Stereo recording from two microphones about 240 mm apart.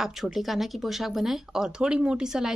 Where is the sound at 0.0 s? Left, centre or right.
Centre.